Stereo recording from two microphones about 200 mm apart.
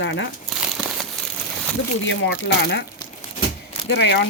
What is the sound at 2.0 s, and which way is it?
Speech, 65° left (ahead or behind).